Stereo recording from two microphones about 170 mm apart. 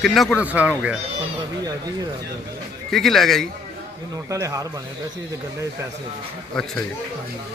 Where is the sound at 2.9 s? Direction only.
Centre (ahead or behind).